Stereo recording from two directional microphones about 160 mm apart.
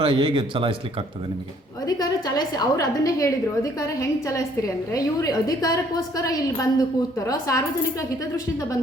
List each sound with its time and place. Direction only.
0.0 s speech: 30° right (ahead or behind)
1.8 s a woman's voice: 25° left (ahead or behind)